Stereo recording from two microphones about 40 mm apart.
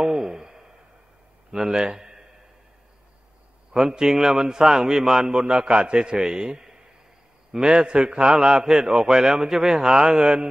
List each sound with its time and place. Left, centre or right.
0.0 s a sound: centre
1.5 s speech: centre
3.7 s a man's voice: centre